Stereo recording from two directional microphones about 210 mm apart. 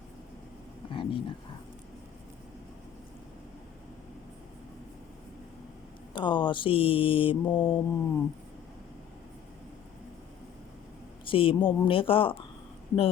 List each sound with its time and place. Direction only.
0.9 s a sound: 25° left (ahead or behind)
6.1 s mantra: 20° left (ahead or behind)
11.3 s mantra: 25° left (ahead or behind)